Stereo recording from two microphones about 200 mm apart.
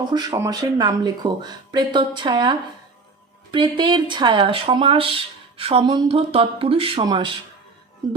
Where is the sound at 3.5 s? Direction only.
25° right (ahead or behind).